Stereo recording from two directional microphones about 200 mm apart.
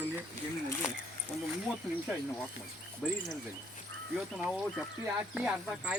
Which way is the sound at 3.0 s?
Centre (ahead or behind).